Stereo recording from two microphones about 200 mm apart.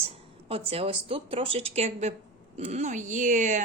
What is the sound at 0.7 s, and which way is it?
A woman's voice, 30° right (ahead or behind).